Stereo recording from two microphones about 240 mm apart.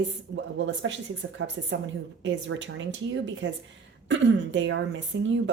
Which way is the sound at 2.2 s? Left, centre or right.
Right.